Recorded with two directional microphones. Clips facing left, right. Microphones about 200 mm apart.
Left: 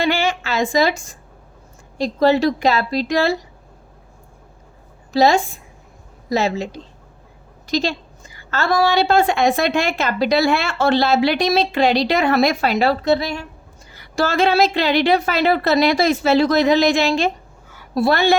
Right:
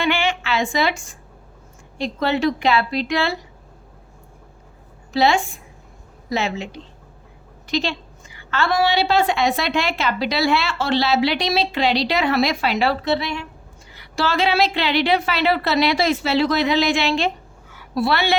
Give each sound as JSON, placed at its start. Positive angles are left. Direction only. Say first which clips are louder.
{"t": 0.0, "sound": "a sound", "louder": "left 2 dB", "side_deg": 40}
{"t": 2.0, "sound": "a woman's voice", "louder": "left 5 dB", "side_deg": 40}
{"t": 5.1, "sound": "a woman's voice", "louder": "left 3 dB", "side_deg": 40}